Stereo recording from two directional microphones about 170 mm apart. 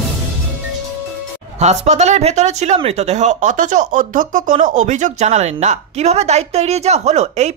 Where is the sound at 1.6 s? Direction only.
40° right (ahead or behind).